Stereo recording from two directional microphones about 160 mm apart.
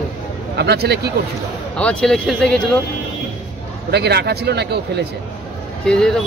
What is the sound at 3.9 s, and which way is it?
Speech, 90° right.